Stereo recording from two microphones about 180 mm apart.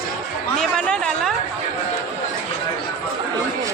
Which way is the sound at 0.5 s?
5° left (ahead or behind).